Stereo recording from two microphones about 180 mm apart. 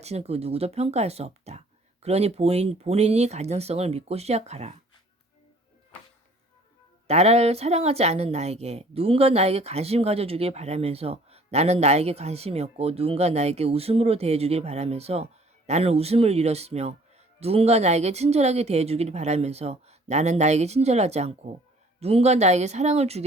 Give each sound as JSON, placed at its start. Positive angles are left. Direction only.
{"t": 0.0, "sound": "a woman's voice", "side_deg": -35}
{"t": 7.1, "sound": "a woman's voice", "side_deg": -35}